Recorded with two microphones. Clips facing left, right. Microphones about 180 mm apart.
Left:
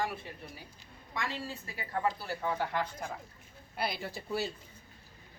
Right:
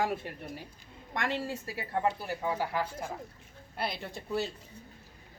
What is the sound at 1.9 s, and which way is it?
Speech, 15° right (ahead or behind).